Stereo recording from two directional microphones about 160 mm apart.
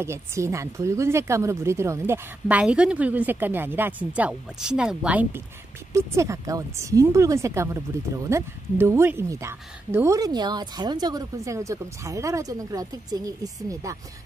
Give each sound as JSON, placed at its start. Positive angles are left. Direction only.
{"t": 0.0, "sound": "a woman's voice", "side_deg": -15}